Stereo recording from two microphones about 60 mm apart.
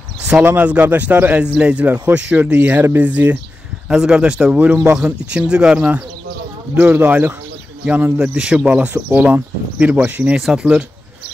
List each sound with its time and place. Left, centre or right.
0.3 s speech: right
3.9 s speech: centre; by 7.3 s right
8.2 s speech: centre
9.1 s speech: right
10.3 s speech: centre